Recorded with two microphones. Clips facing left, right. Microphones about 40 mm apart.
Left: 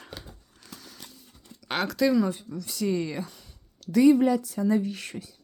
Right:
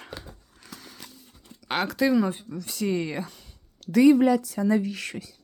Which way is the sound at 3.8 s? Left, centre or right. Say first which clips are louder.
Right 1 dB; right.